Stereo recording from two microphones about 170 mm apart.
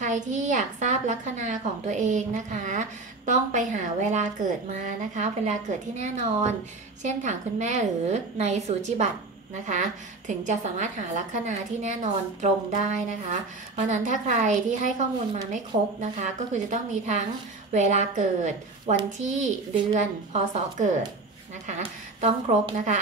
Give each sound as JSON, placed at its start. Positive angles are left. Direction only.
{"t": 0.0, "sound": "a woman's voice", "side_deg": -45}